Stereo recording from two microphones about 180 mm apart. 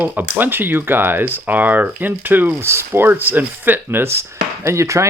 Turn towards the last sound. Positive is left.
turn(degrees=-15)  # may be behind; listen again after turning